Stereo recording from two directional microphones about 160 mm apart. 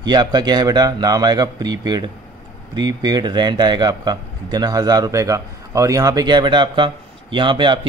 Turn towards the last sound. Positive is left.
turn(degrees=-30)  # may be behind; listen again after turning